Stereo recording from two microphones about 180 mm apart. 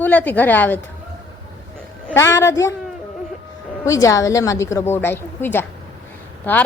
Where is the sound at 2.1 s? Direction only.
15° left (ahead or behind).